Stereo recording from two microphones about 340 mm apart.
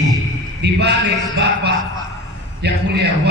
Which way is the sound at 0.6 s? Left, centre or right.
Right.